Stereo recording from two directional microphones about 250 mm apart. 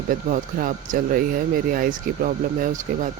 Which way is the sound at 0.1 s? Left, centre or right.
Right.